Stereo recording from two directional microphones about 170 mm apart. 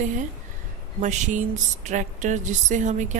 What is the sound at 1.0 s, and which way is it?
Speech, 45° right (ahead or behind).